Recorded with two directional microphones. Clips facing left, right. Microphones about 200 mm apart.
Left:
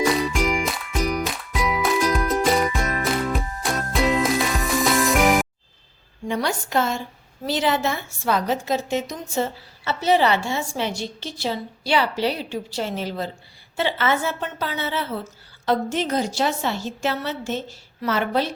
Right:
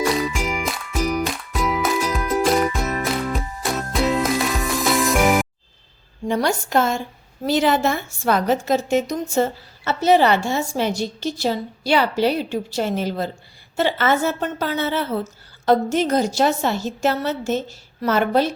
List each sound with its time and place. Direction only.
0.0 s music: centre (ahead or behind)
6.2 s a woman's voice: 40° right (ahead or behind)